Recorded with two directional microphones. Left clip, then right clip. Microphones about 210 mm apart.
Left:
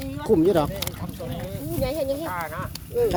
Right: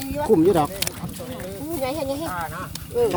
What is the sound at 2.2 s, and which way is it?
Speech, 40° left (ahead or behind).